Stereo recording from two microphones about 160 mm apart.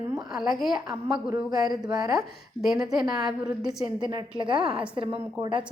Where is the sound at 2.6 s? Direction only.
Centre (ahead or behind).